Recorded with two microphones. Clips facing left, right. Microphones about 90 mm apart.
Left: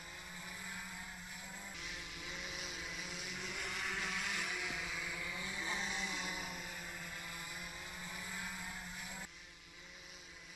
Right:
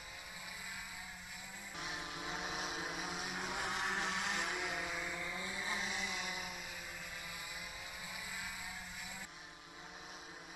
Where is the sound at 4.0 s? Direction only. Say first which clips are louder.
Right 3 dB; 25° right (ahead or behind).